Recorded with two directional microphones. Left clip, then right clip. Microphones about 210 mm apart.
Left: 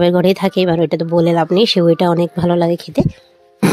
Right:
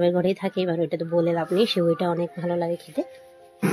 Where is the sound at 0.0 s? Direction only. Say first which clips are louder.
Left 9 dB; 50° left (ahead or behind).